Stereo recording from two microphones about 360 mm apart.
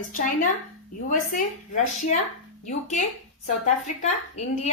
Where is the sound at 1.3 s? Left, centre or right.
Left.